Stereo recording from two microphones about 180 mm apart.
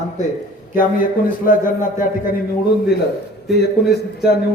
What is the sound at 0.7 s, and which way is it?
Speech, 50° left (ahead or behind).